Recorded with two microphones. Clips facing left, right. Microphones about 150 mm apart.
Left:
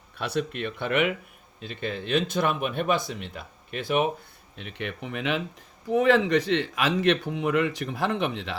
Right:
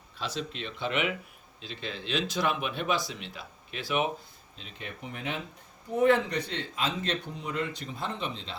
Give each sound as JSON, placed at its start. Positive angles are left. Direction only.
{"t": 0.2, "sound": "speech", "side_deg": 60}
{"t": 4.5, "sound": "speech", "side_deg": 70}